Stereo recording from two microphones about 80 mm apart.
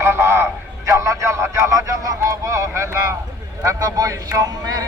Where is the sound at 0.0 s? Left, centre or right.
Right.